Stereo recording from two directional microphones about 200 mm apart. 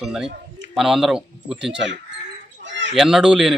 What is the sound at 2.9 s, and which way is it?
Speech, centre (ahead or behind).